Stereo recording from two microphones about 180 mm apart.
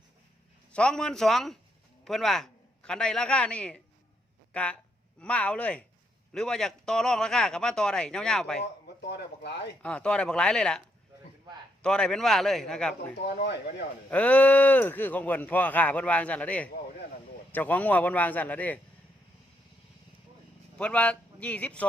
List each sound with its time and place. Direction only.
0.7 s a man's voice: 5° left (ahead or behind)
8.6 s speech: 70° left (ahead or behind)
9.8 s a man's voice: 5° left (ahead or behind)
13.2 s speech: 70° left (ahead or behind)
14.1 s speech: 10° left (ahead or behind)
20.7 s a man's voice: 5° left (ahead or behind)